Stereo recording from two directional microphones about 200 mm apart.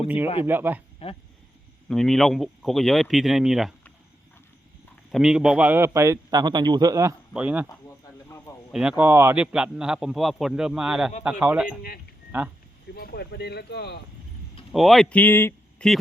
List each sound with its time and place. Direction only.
0.4 s a man's voice: 10° right (ahead or behind)
1.0 s speech: 30° left (ahead or behind)
1.9 s a man's voice: centre (ahead or behind)
5.1 s a man's voice: 5° right (ahead or behind)
7.7 s a sound: 15° left (ahead or behind)
8.7 s a man's voice: 5° right (ahead or behind)
12.9 s speech: 50° left (ahead or behind)
14.7 s speech: centre (ahead or behind)